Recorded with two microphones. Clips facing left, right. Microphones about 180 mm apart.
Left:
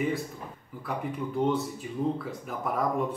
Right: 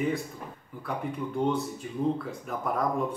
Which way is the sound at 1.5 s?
Centre (ahead or behind).